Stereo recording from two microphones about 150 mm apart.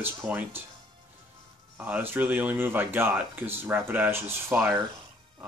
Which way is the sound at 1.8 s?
15° right (ahead or behind).